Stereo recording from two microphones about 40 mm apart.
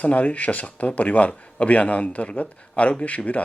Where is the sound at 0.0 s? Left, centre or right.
Left.